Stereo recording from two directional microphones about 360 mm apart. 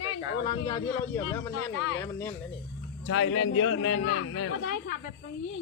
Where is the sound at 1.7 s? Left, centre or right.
Left.